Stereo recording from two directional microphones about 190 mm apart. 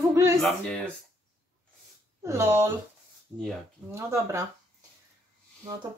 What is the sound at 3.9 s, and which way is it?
Speech, 15° right (ahead or behind).